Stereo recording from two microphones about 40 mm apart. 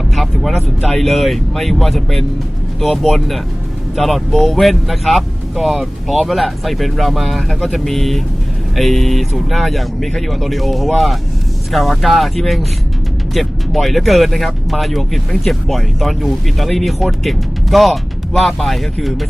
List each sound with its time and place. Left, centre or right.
0.2 s speech: centre